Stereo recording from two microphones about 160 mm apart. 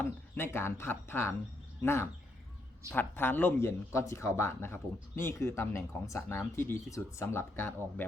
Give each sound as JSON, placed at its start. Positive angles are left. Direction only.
{"t": 0.0, "sound": "speech", "side_deg": 15}